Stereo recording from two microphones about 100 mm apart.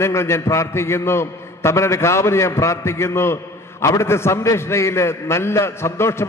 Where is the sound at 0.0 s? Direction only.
25° left (ahead or behind).